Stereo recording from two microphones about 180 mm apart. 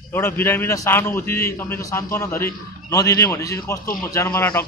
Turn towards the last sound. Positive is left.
turn(degrees=10)  # may be behind; listen again after turning